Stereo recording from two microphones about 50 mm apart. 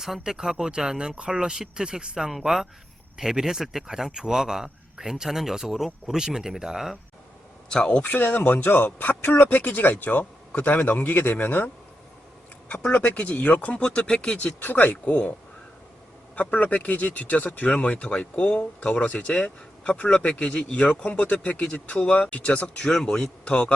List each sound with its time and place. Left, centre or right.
0.0 s speech: centre
7.7 s speech: left
14.6 s speech: left
22.9 s speech: centre